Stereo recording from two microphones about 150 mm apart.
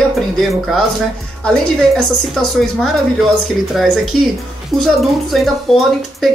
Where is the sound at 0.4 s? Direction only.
Centre (ahead or behind).